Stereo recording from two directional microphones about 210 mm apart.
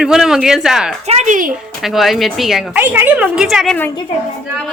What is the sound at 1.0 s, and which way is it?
Speech, 35° right (ahead or behind).